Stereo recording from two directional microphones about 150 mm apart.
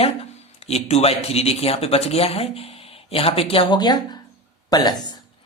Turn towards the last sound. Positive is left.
turn(degrees=25)  # may be behind; listen again after turning